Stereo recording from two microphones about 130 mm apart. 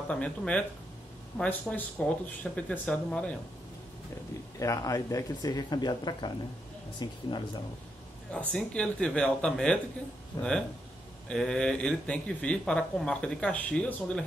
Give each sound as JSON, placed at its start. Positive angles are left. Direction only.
{"t": 0.1, "sound": "speech", "side_deg": 10}
{"t": 4.6, "sound": "speech", "side_deg": 25}
{"t": 8.3, "sound": "speech", "side_deg": 5}
{"t": 11.2, "sound": "speech", "side_deg": 5}